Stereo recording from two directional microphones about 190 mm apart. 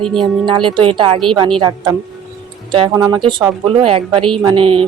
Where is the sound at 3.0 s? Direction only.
20° right (ahead or behind).